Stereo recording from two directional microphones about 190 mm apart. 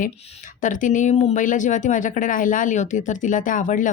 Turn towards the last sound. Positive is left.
turn(degrees=45)  # may be behind; listen again after turning